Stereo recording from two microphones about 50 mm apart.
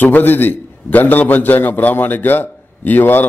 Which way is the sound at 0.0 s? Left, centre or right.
Left.